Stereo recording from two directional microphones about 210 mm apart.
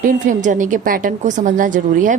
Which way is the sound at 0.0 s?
40° right (ahead or behind).